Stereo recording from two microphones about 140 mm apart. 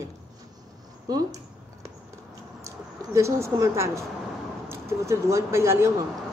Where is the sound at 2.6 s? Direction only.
20° right (ahead or behind).